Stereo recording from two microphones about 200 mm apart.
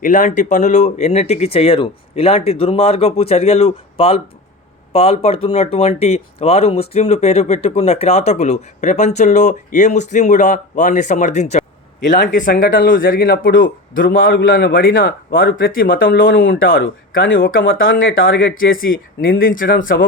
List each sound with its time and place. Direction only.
0.0 s speech: 40° left (ahead or behind)
12.1 s speech: 60° left (ahead or behind)
12.4 s speech: 45° left (ahead or behind)
16.3 s speech: 70° left (ahead or behind)
18.9 s speech: 45° left (ahead or behind)